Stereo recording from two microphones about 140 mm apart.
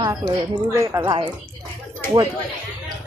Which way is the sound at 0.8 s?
20° right (ahead or behind).